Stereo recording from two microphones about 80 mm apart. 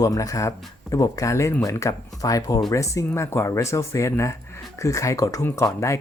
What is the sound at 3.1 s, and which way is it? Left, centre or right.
Speech, left.